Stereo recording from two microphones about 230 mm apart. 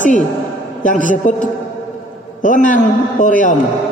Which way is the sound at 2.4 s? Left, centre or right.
Left.